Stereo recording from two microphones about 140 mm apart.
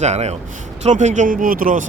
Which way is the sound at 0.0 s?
50° right (ahead or behind).